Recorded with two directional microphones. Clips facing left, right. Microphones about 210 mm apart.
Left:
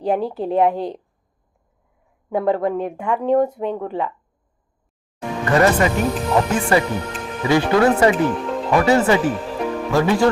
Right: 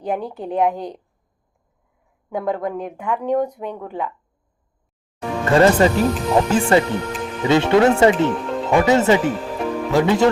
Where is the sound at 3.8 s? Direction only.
5° right (ahead or behind).